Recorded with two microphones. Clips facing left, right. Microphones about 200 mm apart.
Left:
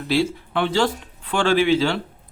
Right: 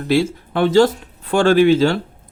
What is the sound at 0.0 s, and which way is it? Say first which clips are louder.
Speech: right 4 dB; 45° right (ahead or behind).